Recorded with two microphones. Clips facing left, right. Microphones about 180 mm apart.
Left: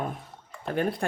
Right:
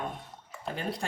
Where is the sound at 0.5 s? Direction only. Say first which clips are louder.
Even; centre (ahead or behind).